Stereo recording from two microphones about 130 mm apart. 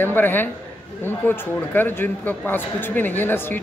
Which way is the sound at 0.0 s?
15° left (ahead or behind).